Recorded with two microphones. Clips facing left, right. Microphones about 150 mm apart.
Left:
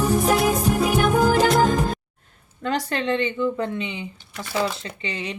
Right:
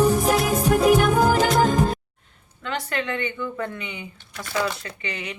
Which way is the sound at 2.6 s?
40° left (ahead or behind).